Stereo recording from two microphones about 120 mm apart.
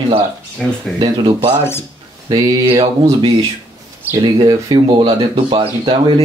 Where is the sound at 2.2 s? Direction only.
35° right (ahead or behind).